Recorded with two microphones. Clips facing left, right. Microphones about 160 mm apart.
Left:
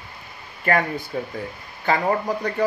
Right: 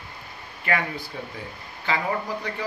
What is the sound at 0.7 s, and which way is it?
Speech, 45° left (ahead or behind).